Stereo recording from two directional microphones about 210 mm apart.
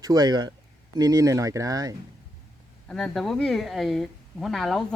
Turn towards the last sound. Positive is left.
turn(degrees=0)  # may be behind; listen again after turning